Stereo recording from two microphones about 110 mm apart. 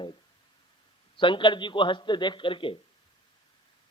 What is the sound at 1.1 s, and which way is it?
A man's voice, 50° left (ahead or behind).